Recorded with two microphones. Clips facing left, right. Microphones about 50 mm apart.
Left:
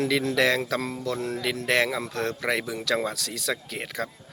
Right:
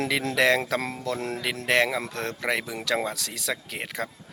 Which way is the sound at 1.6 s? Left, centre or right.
Centre.